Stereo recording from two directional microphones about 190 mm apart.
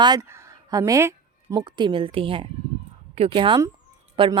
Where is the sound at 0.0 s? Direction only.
20° right (ahead or behind).